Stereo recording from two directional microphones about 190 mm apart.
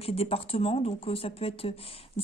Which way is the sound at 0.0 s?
30° left (ahead or behind).